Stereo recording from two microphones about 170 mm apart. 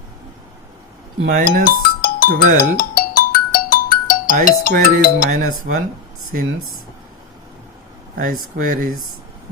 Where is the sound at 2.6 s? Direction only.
60° left (ahead or behind).